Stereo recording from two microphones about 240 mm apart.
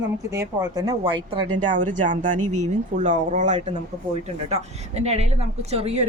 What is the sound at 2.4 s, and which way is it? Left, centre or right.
Speech, right.